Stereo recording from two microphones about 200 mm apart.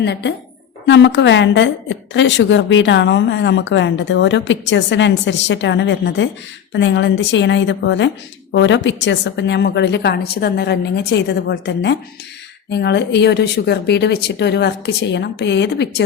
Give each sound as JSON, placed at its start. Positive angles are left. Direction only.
{"t": 0.0, "sound": "a woman's voice", "side_deg": 60}